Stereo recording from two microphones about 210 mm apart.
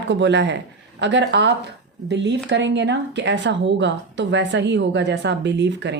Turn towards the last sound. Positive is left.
turn(degrees=-55)  # may be behind; listen again after turning